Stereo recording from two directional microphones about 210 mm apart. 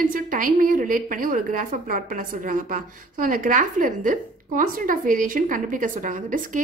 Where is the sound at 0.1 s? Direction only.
40° right (ahead or behind).